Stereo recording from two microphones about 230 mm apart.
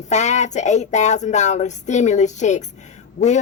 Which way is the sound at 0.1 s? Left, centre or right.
Left.